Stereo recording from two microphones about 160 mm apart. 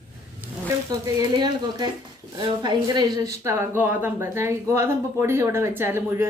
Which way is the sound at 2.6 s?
25° right (ahead or behind).